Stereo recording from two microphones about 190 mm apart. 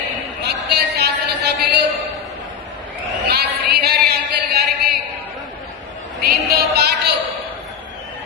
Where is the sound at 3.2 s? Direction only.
55° right (ahead or behind).